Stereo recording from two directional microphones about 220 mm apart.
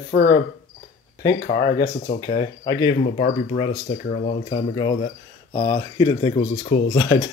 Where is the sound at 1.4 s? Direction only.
40° left (ahead or behind).